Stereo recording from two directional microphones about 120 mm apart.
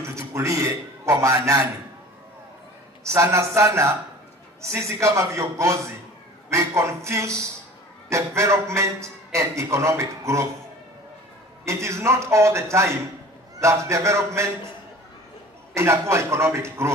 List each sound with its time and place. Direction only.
0.0 s a man's voice: 25° right (ahead or behind)
3.1 s a man's voice: 25° right (ahead or behind)
11.6 s a man's voice: 25° right (ahead or behind)
15.7 s a man's voice: 25° right (ahead or behind)